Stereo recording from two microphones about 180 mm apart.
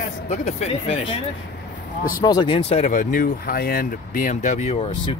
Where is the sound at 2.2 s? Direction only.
20° left (ahead or behind).